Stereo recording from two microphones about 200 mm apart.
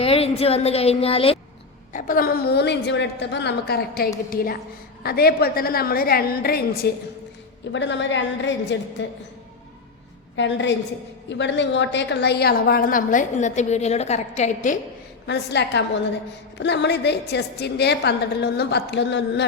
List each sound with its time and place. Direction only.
0.0 s speech: 30° left (ahead or behind)
1.9 s a woman's voice: 40° left (ahead or behind)
7.7 s a woman's voice: 60° left (ahead or behind)
10.3 s a woman's voice: 65° left (ahead or behind); by 14.8 s 35° left (ahead or behind)
15.3 s a woman's voice: 60° left (ahead or behind)